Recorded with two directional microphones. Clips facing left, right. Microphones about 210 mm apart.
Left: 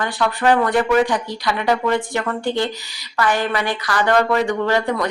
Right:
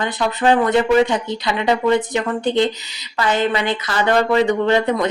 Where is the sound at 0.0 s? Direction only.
20° right (ahead or behind).